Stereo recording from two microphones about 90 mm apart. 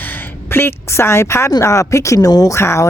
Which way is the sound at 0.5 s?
25° left (ahead or behind).